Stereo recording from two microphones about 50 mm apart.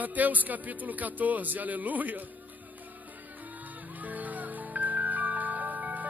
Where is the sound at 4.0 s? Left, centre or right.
Right.